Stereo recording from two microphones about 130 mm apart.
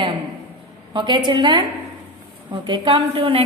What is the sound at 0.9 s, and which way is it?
Speech, 35° right (ahead or behind).